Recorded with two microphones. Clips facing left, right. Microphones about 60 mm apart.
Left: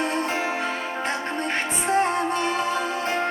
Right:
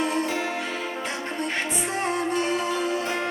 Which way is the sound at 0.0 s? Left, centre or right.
Left.